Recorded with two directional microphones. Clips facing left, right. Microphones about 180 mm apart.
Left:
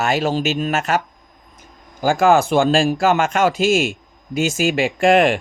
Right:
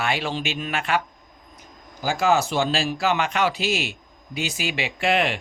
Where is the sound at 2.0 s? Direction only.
50° left (ahead or behind).